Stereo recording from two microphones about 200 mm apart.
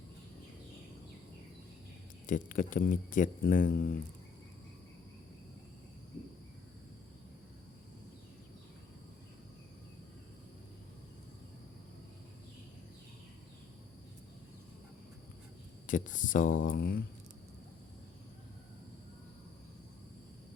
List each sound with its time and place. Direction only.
2.2 s speech: 40° left (ahead or behind)
15.9 s speech: 40° left (ahead or behind)